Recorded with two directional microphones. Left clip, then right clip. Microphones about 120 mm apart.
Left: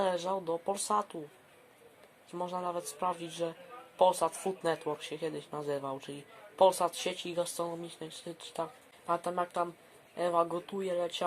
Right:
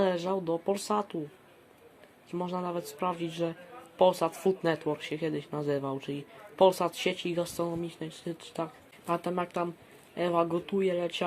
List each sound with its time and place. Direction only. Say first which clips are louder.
0.0 s speech: right 3 dB; 20° right (ahead or behind)
2.3 s speech: right 2 dB; 20° right (ahead or behind)